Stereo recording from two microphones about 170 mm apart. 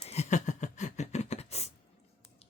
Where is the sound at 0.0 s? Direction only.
40° left (ahead or behind).